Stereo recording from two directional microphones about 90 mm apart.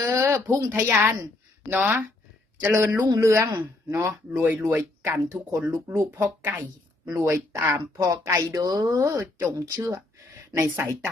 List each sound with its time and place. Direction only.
0.0 s a sound: 35° right (ahead or behind)
0.7 s speech: 30° right (ahead or behind)
5.0 s a woman's voice: 30° right (ahead or behind)
7.1 s speech: 35° right (ahead or behind)